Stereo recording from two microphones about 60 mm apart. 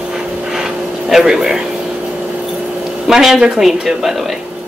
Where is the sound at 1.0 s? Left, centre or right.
Centre.